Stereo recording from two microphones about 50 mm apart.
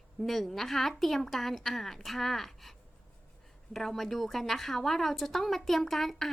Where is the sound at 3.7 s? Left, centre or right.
Centre.